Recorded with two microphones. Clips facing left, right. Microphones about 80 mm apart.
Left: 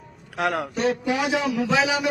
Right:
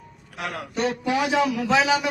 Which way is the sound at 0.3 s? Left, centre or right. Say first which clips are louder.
Left 8 dB; left.